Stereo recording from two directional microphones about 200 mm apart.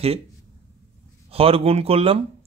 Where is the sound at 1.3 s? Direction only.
30° right (ahead or behind).